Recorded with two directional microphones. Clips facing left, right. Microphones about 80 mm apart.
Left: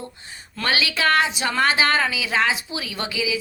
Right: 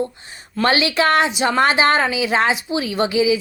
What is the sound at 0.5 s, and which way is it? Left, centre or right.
A woman's voice, right.